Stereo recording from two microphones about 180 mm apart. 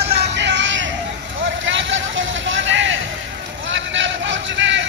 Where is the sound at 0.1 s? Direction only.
70° right (ahead or behind); by 0.8 s 85° right.